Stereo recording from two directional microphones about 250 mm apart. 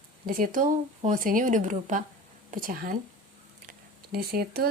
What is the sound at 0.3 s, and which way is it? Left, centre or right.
Speech, right.